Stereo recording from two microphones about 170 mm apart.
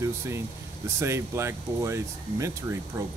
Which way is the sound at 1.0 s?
15° right (ahead or behind).